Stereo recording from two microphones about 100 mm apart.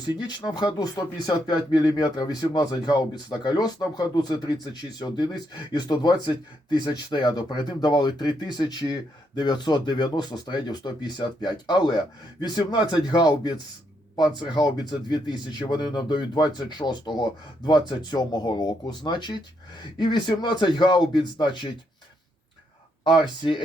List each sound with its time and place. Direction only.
0.3 s speech: 45° left (ahead or behind)
23.0 s speech: 50° left (ahead or behind)